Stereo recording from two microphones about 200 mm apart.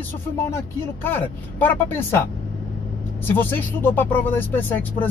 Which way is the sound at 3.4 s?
10° left (ahead or behind).